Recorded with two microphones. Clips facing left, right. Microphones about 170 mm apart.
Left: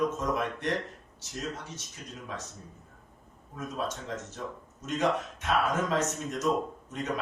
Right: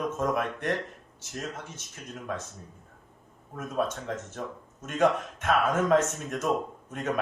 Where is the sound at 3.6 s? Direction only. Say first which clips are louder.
Right 4 dB; 55° right (ahead or behind).